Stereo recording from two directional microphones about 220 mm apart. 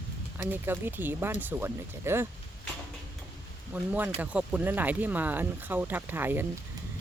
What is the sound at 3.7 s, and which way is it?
Speech, 5° right (ahead or behind).